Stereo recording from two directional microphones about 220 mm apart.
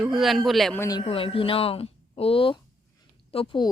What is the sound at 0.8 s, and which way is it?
Speech, 15° left (ahead or behind).